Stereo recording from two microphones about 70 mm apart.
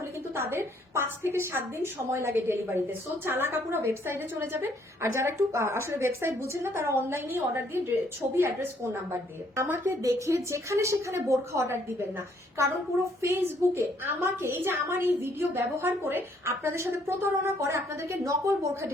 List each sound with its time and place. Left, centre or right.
0.0 s a woman's voice: right